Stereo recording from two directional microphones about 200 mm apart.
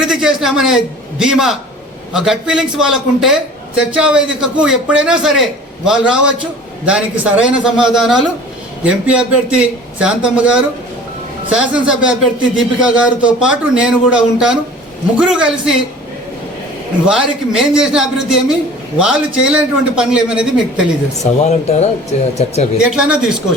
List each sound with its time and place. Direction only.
0.0 s a man's voice: 5° right (ahead or behind)
17.1 s a man's voice: 5° right (ahead or behind)
21.2 s speech: 40° left (ahead or behind)
22.8 s a man's voice: 5° right (ahead or behind)